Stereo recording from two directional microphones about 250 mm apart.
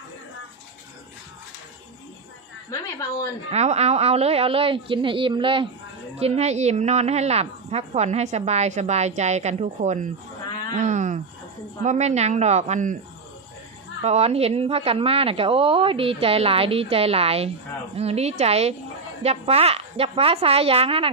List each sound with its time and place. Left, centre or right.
2.6 s a woman's voice: centre
3.5 s a woman's voice: right
14.0 s a woman's voice: right